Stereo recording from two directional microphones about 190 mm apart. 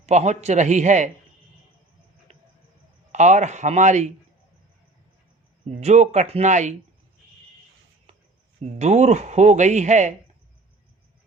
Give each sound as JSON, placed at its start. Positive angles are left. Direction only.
{"t": 0.0, "sound": "speech", "side_deg": -35}
{"t": 2.3, "sound": "cricket", "side_deg": -35}
{"t": 3.1, "sound": "speech", "side_deg": -40}
{"t": 5.8, "sound": "speech", "side_deg": -35}
{"t": 8.6, "sound": "speech", "side_deg": -35}